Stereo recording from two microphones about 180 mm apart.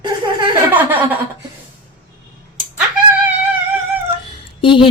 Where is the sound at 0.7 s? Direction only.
10° right (ahead or behind).